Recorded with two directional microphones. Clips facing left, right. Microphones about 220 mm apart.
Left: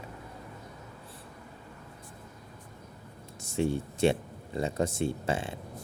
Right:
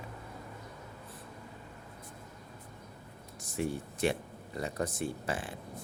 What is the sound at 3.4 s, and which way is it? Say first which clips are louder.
Speech: left 5 dB; 25° left (ahead or behind).